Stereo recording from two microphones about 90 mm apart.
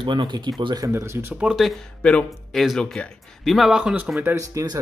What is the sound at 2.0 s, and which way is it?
Speech, 10° left (ahead or behind).